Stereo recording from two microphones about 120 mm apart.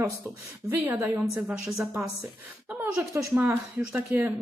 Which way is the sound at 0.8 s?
20° right (ahead or behind).